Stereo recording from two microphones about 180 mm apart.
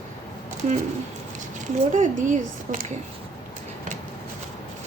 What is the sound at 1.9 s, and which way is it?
Speech, 45° right (ahead or behind).